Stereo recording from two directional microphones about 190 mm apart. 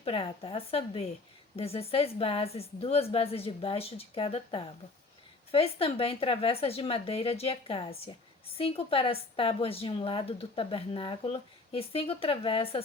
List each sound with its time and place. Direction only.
0.0 s a woman's voice: 30° left (ahead or behind)